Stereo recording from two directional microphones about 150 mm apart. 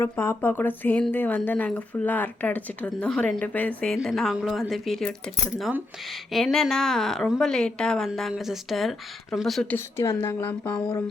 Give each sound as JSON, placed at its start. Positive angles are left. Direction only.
{"t": 0.0, "sound": "a woman's voice", "side_deg": 15}
{"t": 9.7, "sound": "speech", "side_deg": 20}